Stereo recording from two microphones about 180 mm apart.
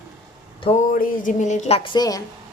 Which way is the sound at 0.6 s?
35° left (ahead or behind).